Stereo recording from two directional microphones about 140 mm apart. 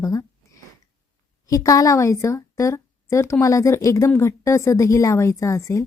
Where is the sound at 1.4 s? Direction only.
25° left (ahead or behind).